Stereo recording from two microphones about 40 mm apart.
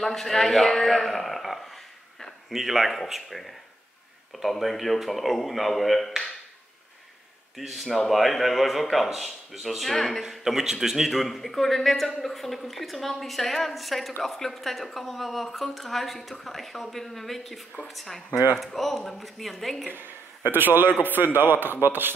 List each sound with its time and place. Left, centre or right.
0.0 s a man's voice: centre
7.5 s a woman's voice: centre
9.9 s speech: centre
10.4 s a man's voice: centre
11.1 s a woman's voice: centre
19.9 s a man's voice: right